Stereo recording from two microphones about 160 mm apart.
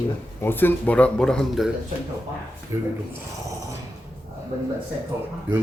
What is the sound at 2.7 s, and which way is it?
Speech, 15° right (ahead or behind).